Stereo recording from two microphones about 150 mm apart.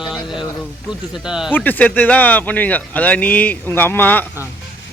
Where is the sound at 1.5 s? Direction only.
10° left (ahead or behind).